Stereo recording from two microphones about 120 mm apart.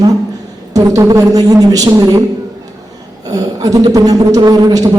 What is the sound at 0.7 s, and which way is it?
A man's voice, 30° right (ahead or behind).